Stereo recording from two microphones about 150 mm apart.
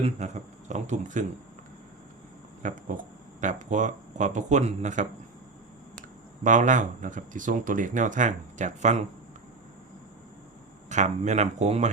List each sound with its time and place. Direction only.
0.2 s speech: 50° right (ahead or behind)
2.6 s speech: 60° right (ahead or behind)
6.4 s speech: 55° right (ahead or behind)
10.8 s speech: 55° right (ahead or behind)